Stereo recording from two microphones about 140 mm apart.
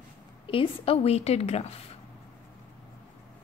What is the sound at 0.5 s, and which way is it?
A woman's voice, 40° left (ahead or behind).